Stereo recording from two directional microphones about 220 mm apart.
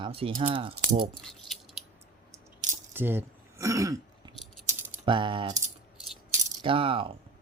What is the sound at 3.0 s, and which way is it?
Throat clearing, 10° right (ahead or behind).